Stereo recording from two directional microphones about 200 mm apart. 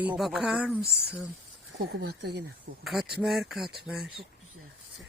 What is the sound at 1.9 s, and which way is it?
Speech, 55° right (ahead or behind).